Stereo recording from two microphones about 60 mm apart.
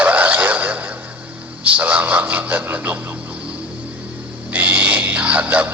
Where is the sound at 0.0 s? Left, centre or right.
Right.